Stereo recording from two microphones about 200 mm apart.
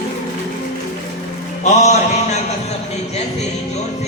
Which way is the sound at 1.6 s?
35° left (ahead or behind).